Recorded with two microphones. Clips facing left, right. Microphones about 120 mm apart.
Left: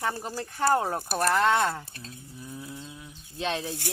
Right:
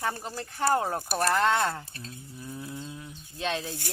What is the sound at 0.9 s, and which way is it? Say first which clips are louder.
Speech: left 1 dB; centre (ahead or behind).